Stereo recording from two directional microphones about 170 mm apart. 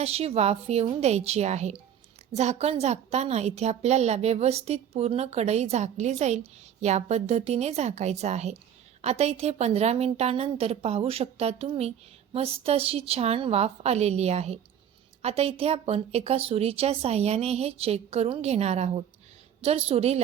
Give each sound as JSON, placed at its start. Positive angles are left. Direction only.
{"t": 0.0, "sound": "a woman's voice", "side_deg": -35}